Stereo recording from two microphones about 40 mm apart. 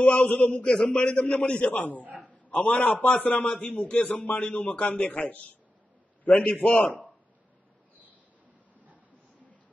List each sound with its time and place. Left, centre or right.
0.0 s a man's voice: left
0.6 s a man's voice: centre; by 3.4 s left
3.4 s a man's voice: left
5.0 s a man's voice: left